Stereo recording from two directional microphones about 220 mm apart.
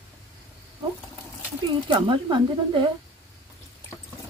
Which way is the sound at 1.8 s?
20° right (ahead or behind).